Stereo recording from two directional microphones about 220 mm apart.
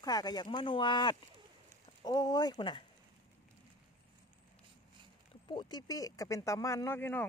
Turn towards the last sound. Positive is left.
turn(degrees=10)  # may be behind; listen again after turning